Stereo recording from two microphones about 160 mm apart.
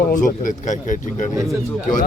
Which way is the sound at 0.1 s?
55° left (ahead or behind).